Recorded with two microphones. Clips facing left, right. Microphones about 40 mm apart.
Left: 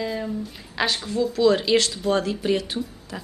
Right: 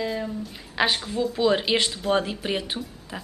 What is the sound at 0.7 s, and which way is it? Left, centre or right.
A woman's voice, centre.